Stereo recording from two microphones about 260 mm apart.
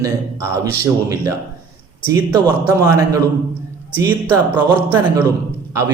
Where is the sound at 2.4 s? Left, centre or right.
Centre.